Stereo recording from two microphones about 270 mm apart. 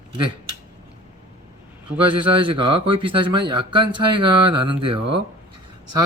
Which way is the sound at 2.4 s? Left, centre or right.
Centre.